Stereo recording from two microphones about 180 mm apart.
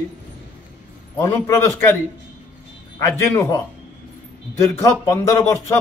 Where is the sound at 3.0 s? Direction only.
15° left (ahead or behind).